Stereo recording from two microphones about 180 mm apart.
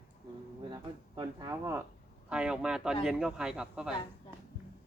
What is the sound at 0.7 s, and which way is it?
Speech, 25° right (ahead or behind).